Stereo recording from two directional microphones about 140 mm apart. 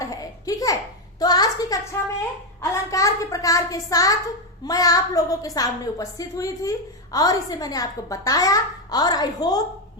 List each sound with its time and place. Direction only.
0.0 s babbling: 25° left (ahead or behind)
1.2 s a sound: 30° left (ahead or behind)
4.6 s a woman's voice: 25° left (ahead or behind)